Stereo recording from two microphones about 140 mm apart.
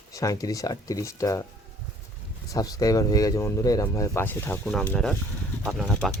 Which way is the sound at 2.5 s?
25° left (ahead or behind).